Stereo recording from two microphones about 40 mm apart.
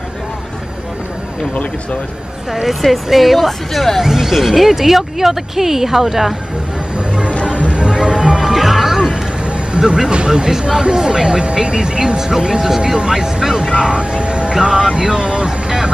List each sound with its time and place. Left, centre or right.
1.5 s speech: left
2.5 s speech: centre
4.0 s speech: centre
7.7 s music: right
8.4 s music: centre
9.8 s speech: centre
14.5 s vehicle: centre